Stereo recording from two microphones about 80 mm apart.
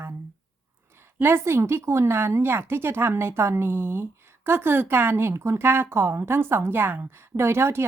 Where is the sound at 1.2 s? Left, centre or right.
Right.